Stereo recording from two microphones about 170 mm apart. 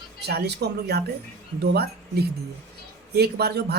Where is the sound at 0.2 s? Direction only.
75° right (ahead or behind).